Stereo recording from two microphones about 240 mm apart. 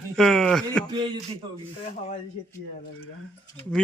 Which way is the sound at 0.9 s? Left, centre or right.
Centre.